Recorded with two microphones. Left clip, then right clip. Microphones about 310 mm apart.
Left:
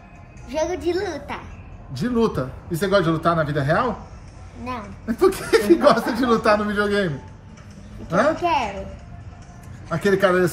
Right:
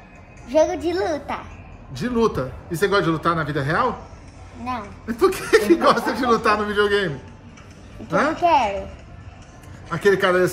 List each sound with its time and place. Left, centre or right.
0.5 s a woman's voice: centre
2.0 s speech: centre
8.4 s a woman's voice: centre
9.8 s speech: centre